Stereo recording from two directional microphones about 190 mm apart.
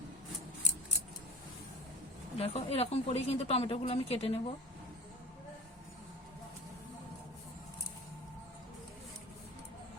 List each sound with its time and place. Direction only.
2.4 s speech: 35° left (ahead or behind)